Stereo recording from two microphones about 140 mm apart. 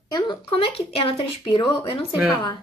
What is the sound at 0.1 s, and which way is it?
Speech, 35° left (ahead or behind).